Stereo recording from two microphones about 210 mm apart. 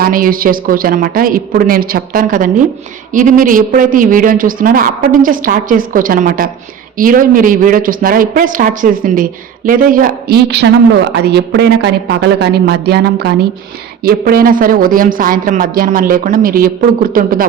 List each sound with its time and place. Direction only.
0.0 s a woman's voice: 40° right (ahead or behind)